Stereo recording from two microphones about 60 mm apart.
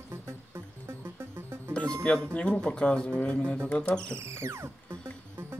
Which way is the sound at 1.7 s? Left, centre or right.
Centre.